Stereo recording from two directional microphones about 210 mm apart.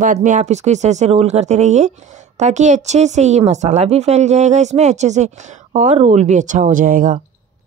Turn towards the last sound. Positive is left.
turn(degrees=-40)  # may be behind; listen again after turning